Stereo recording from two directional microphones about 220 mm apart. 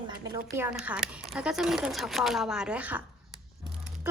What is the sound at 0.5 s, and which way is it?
Speech, 10° right (ahead or behind).